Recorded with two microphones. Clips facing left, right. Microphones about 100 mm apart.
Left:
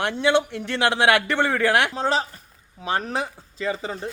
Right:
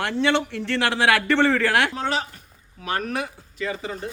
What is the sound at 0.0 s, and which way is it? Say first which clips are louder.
A man's voice: left 1 dB; 15° left (ahead or behind).